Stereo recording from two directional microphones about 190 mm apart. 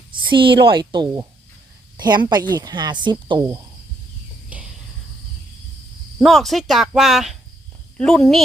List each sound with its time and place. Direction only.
0.2 s speech: 25° right (ahead or behind)
4.5 s a sound: 5° right (ahead or behind)
6.1 s speech: centre (ahead or behind)